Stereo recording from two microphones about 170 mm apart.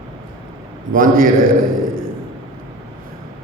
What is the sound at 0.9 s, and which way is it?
A man's voice, 55° right (ahead or behind).